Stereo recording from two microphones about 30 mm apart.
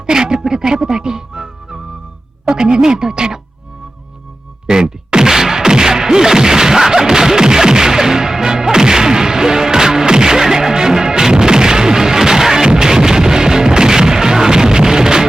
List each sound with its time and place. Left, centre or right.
0.0 s speech: right
2.4 s music: right
4.8 s whack: centre